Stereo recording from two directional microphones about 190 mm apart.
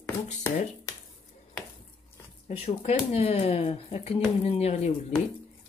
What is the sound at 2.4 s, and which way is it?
Speech, 35° left (ahead or behind).